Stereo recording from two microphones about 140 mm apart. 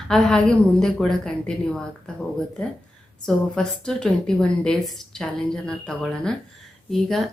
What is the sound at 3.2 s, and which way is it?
A woman's voice, 5° left (ahead or behind).